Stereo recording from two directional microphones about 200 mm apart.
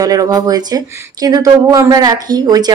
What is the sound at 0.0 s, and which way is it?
A woman's voice, 20° right (ahead or behind).